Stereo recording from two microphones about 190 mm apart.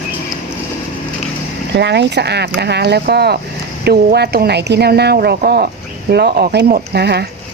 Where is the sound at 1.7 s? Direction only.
65° right (ahead or behind).